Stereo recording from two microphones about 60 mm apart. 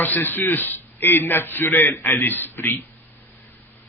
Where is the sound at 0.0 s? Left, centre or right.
Left.